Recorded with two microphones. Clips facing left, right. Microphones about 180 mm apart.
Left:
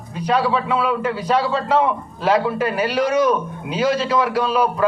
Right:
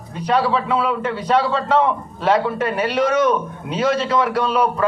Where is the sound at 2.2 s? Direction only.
30° right (ahead or behind).